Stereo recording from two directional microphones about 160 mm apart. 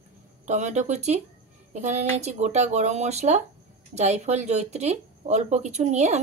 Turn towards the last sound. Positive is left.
turn(degrees=-45)  # may be behind; listen again after turning